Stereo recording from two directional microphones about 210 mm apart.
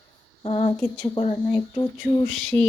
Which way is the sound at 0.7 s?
5° left (ahead or behind).